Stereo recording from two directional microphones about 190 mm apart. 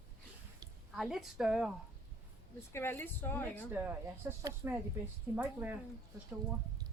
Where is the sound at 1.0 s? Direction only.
Centre (ahead or behind).